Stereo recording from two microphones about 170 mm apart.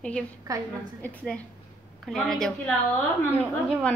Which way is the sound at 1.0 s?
10° left (ahead or behind).